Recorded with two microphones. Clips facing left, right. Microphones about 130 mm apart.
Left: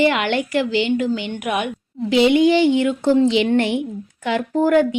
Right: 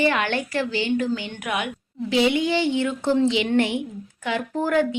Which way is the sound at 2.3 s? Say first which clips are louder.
Left 7 dB; 55° left (ahead or behind).